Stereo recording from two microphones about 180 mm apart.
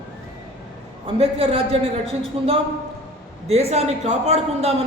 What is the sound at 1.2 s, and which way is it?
A man's voice, 30° right (ahead or behind).